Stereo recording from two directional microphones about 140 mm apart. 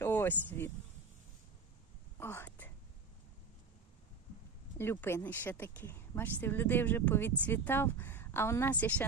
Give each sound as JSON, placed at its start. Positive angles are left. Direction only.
{"t": 0.0, "sound": "a sound", "side_deg": 15}
{"t": 2.1, "sound": "whispering", "side_deg": 15}
{"t": 4.8, "sound": "speech", "side_deg": 15}